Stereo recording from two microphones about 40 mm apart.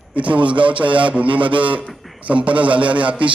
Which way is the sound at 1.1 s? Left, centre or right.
Right.